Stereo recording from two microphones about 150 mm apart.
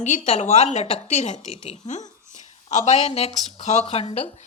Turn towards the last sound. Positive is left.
turn(degrees=40)  # may be behind; listen again after turning